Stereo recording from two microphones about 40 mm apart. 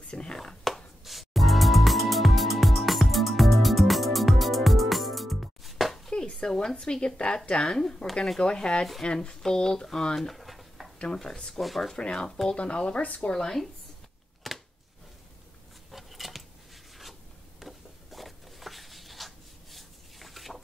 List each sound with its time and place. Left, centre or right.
0.1 s whispering: left
0.7 s music: centre
6.3 s a woman's voice: centre
7.5 s speech: centre
8.1 s speech: centre
8.4 s a woman's voice: left
10.4 s a sound: centre
11.6 s speech: centre
11.9 s a woman's voice: centre
13.0 s speech: left
13.3 s speech: centre
14.4 s a sound: centre
15.9 s a sound: centre
17.6 s a sound: centre